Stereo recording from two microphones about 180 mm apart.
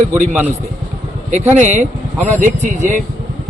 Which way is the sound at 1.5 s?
45° right (ahead or behind).